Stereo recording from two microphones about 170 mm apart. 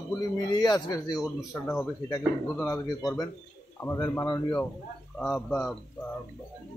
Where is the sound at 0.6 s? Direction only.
25° left (ahead or behind).